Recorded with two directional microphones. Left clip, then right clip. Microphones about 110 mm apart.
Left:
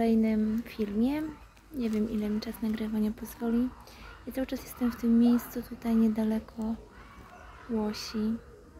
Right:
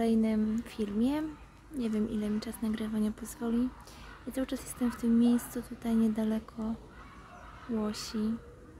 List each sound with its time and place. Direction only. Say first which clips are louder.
0.0 s speech: left 2 dB; 35° right (ahead or behind)
7.7 s speech: left 2 dB; 40° right (ahead or behind)